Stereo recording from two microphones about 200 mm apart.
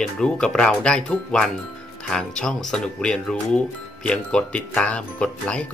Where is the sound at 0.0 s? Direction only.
5° left (ahead or behind).